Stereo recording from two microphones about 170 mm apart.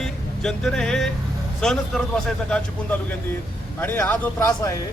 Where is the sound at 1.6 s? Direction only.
Centre (ahead or behind).